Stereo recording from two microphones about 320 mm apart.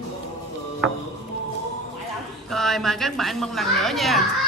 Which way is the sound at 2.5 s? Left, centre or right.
Centre.